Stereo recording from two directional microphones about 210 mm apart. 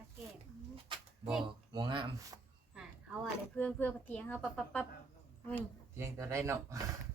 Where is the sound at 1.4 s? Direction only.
20° right (ahead or behind).